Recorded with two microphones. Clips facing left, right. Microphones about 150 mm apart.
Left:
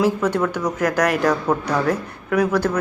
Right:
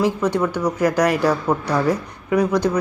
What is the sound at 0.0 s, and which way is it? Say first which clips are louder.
Speech: even; 15° right (ahead or behind).